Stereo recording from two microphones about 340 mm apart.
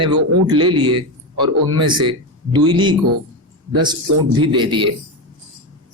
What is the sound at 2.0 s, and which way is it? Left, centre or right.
Speech, centre.